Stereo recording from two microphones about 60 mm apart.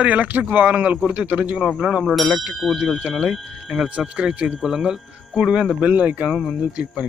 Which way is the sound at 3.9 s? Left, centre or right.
Centre.